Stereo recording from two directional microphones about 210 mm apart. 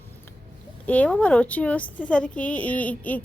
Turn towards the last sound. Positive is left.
turn(degrees=5)  # may be behind; listen again after turning